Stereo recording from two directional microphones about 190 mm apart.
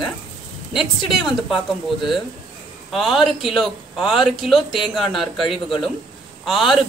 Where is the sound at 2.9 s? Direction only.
Centre (ahead or behind).